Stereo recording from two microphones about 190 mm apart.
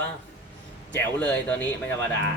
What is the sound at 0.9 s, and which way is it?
Speech, 10° left (ahead or behind).